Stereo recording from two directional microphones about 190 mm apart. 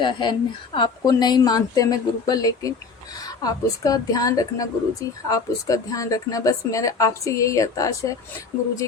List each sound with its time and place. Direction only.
0.0 s a woman's voice: 25° left (ahead or behind)